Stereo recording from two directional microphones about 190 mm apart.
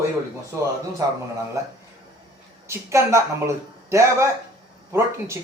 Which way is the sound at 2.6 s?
15° right (ahead or behind).